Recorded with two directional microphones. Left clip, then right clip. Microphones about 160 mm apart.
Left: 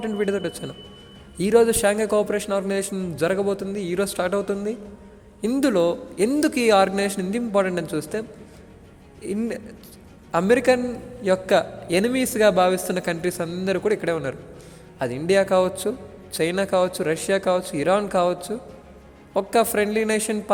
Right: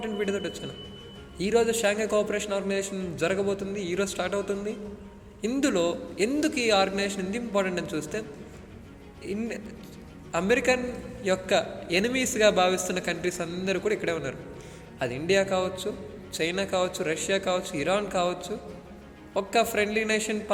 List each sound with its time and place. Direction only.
0.0 s a man's voice: 35° left (ahead or behind)
9.2 s a man's voice: 40° left (ahead or behind)